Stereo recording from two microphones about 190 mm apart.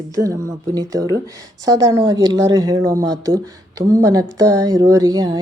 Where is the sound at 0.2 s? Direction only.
20° right (ahead or behind).